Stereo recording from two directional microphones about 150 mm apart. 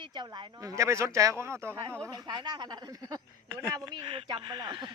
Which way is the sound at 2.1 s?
30° right (ahead or behind).